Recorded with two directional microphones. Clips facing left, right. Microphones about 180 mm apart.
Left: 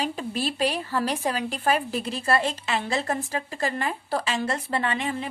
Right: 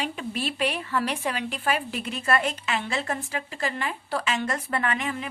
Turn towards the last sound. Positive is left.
turn(degrees=30)  # may be behind; listen again after turning